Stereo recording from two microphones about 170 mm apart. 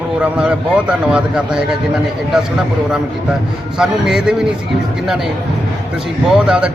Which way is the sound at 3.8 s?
5° right (ahead or behind).